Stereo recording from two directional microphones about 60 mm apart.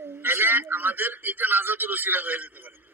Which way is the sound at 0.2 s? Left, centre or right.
Right.